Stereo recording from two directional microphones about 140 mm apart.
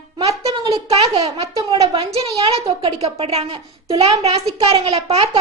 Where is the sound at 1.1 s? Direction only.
40° right (ahead or behind).